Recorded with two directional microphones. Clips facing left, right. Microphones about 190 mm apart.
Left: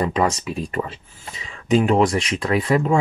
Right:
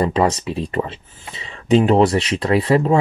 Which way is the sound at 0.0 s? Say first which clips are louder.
Right 3 dB; 30° right (ahead or behind).